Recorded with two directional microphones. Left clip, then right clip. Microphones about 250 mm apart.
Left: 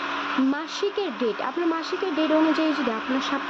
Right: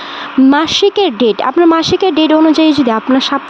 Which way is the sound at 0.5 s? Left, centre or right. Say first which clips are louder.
Right 17 dB; right.